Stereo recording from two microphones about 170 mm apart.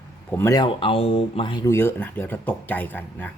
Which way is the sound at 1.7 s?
15° left (ahead or behind).